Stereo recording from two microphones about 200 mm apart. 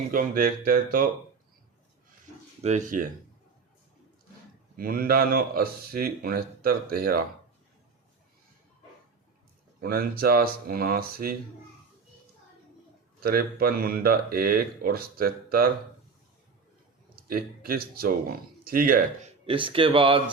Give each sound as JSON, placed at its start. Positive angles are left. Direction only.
{"t": 0.1, "sound": "speech", "side_deg": -45}
{"t": 2.6, "sound": "speech", "side_deg": -40}
{"t": 4.8, "sound": "speech", "side_deg": -50}
{"t": 9.8, "sound": "speech", "side_deg": -50}
{"t": 13.2, "sound": "speech", "side_deg": -50}
{"t": 17.2, "sound": "speech", "side_deg": -45}
{"t": 19.5, "sound": "speech", "side_deg": -25}